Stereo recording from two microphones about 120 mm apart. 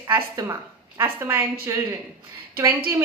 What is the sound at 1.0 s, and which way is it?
Speech, 15° right (ahead or behind).